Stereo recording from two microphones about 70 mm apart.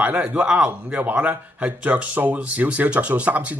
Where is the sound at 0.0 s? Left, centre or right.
Right.